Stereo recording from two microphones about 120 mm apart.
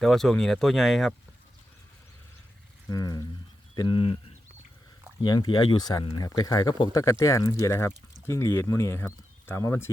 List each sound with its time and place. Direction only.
0.0 s speech: 5° left (ahead or behind)
2.9 s speech: 30° left (ahead or behind)
3.8 s speech: 45° left (ahead or behind)
5.2 s speech: 35° left (ahead or behind)
6.9 s speech: 25° left (ahead or behind)